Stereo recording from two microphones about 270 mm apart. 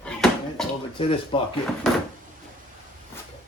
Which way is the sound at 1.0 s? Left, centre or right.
Centre.